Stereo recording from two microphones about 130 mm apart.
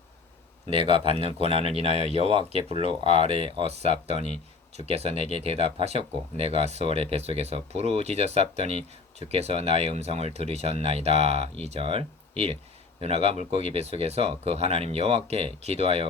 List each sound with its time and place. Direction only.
1.1 s speech: 50° right (ahead or behind)